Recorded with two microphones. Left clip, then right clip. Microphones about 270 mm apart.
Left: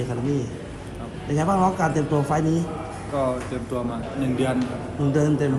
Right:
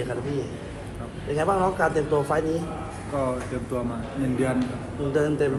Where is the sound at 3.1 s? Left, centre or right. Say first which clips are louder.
Left 3 dB; centre.